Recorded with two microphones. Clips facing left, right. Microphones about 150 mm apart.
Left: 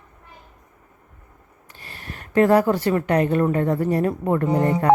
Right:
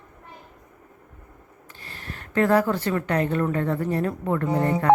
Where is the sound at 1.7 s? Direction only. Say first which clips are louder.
Left 1 dB; 15° left (ahead or behind).